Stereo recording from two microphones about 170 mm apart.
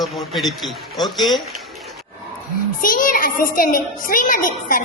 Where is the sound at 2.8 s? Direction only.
55° left (ahead or behind).